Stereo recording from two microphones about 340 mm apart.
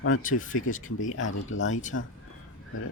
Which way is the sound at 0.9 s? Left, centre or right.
Left.